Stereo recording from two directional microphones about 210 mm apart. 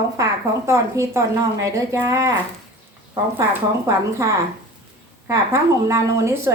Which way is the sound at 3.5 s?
15° right (ahead or behind).